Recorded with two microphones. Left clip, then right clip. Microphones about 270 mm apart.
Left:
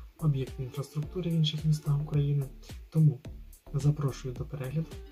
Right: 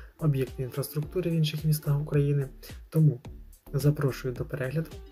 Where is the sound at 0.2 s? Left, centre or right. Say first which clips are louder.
Right 5 dB; centre.